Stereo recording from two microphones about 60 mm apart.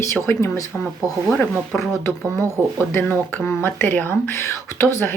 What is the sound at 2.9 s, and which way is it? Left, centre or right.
Speech, left.